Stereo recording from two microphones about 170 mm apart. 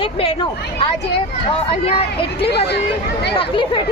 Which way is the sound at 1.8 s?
35° left (ahead or behind).